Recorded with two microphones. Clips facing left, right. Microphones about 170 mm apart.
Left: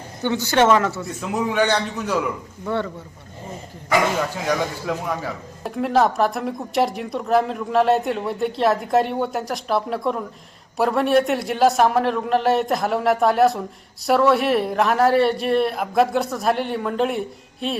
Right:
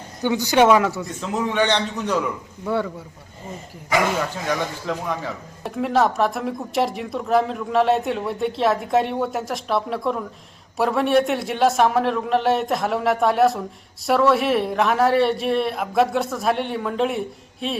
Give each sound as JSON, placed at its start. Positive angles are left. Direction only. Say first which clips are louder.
{"t": 0.2, "sound": "speech", "louder": "right 1 dB", "side_deg": -15}
{"t": 1.2, "sound": "a man's voice", "louder": "left 1 dB", "side_deg": 10}
{"t": 2.6, "sound": "speech", "louder": "right 1 dB", "side_deg": -10}
{"t": 4.4, "sound": "a man's voice", "louder": "left 2 dB", "side_deg": 5}